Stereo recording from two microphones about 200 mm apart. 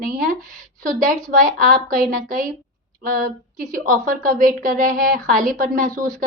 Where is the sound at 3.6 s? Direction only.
40° right (ahead or behind).